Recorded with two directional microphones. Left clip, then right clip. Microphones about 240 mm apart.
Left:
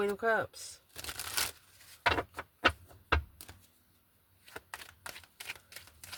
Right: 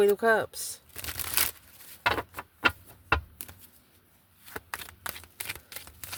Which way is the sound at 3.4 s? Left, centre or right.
Right.